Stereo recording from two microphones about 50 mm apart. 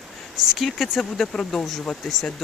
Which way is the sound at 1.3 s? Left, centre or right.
Centre.